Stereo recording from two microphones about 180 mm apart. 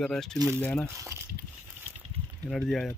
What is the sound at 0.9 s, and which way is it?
Speech, 15° right (ahead or behind).